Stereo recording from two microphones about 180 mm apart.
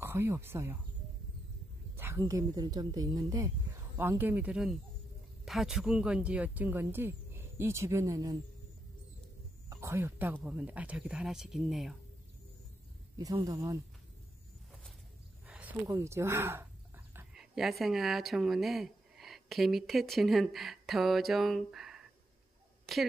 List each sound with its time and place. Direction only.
0.0 s speech: 15° right (ahead or behind)
2.0 s speech: 15° right (ahead or behind)
9.7 s speech: 15° right (ahead or behind)
13.2 s speech: 20° right (ahead or behind)
15.4 s speech: 10° right (ahead or behind)